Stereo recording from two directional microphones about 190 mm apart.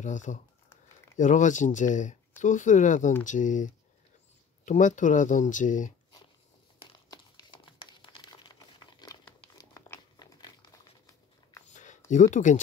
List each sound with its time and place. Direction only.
0.0 s speech: 40° left (ahead or behind)
6.8 s crumpling: 25° left (ahead or behind)
11.7 s a sound: 40° left (ahead or behind)
12.1 s speech: 40° left (ahead or behind)